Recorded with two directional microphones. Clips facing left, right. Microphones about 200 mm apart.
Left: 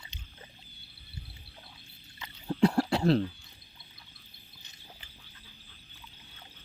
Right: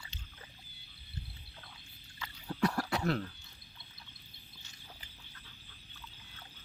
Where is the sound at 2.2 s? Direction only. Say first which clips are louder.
Left 7 dB; 25° left (ahead or behind).